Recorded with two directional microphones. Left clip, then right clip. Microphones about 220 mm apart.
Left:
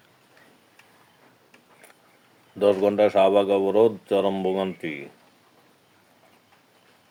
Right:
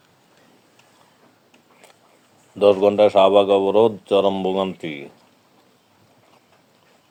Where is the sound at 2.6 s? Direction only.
15° right (ahead or behind).